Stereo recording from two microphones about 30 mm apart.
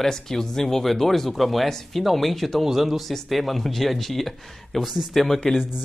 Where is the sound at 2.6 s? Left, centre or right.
Centre.